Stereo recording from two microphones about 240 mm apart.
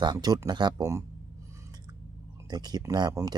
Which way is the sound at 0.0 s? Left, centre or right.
Centre.